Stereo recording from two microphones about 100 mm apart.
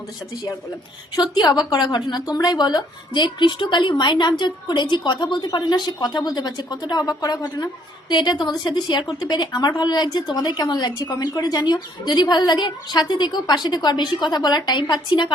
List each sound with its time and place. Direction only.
1.1 s a woman's voice: 45° left (ahead or behind)